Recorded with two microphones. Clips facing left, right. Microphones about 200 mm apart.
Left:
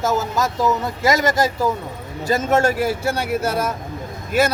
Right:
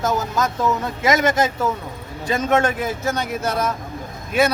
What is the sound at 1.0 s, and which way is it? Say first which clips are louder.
Speech: even; 20° right (ahead or behind).